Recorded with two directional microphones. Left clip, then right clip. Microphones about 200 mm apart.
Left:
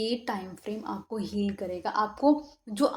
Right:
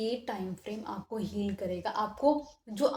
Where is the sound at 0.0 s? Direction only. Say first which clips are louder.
Left 3 dB; 40° left (ahead or behind).